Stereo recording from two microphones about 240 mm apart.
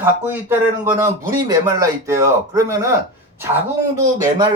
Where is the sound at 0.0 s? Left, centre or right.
Centre.